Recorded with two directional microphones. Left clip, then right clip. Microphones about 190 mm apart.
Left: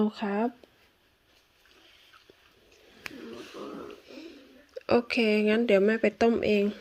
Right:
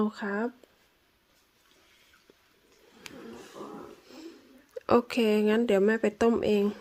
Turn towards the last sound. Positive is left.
turn(degrees=-10)  # may be behind; listen again after turning